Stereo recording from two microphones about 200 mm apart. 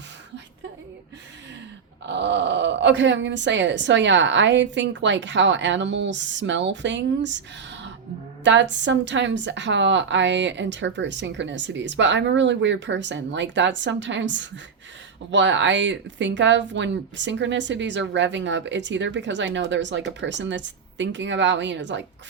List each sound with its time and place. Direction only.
2.0 s speech: 60° right (ahead or behind)